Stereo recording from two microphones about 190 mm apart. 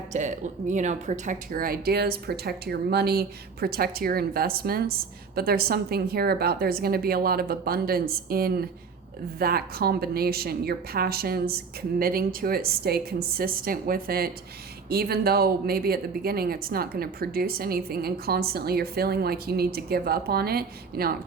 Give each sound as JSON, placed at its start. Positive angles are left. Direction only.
{"t": 0.1, "sound": "speech", "side_deg": -40}